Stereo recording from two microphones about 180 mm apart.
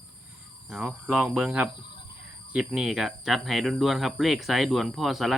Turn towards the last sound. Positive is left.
turn(degrees=0)  # may be behind; listen again after turning